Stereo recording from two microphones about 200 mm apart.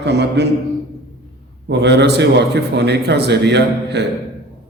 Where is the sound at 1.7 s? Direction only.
60° right (ahead or behind).